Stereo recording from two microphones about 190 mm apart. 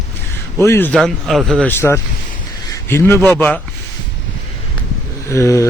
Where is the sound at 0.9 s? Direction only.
Centre (ahead or behind).